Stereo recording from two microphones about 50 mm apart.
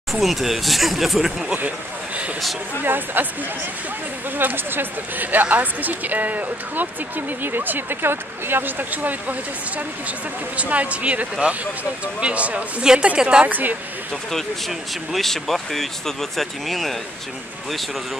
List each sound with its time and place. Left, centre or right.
0.1 s speech: centre
2.8 s a woman's voice: right
4.4 s a woman's voice: right
13.5 s a woman's voice: right
14.7 s speech: centre